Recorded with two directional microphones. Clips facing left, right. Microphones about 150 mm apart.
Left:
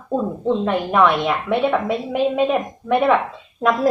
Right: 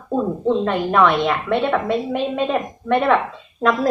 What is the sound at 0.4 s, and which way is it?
A woman's voice, 5° left (ahead or behind).